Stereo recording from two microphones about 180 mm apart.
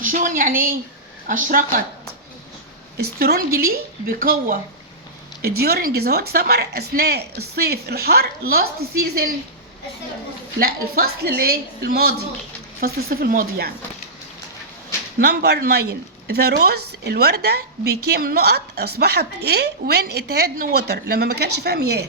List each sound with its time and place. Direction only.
0.0 s a woman's voice: 50° right (ahead or behind)
3.0 s a woman's voice: 60° right (ahead or behind)
10.9 s speech: 60° right (ahead or behind)
15.2 s speech: 65° right (ahead or behind)